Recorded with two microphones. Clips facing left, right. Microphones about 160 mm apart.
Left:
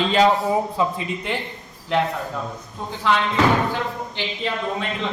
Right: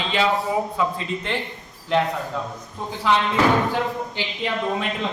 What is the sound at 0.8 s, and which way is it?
Speech, 25° left (ahead or behind).